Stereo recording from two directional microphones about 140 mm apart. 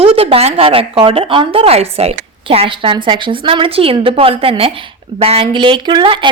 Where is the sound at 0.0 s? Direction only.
45° right (ahead or behind).